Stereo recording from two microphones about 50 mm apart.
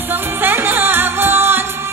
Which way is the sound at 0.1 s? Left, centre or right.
Right.